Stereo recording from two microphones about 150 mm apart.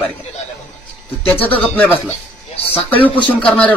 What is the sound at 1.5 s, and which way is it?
Speech, 10° left (ahead or behind).